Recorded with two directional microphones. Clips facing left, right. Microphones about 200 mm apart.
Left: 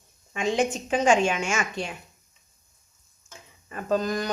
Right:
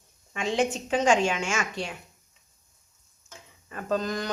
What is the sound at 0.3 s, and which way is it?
A woman's voice, 15° left (ahead or behind).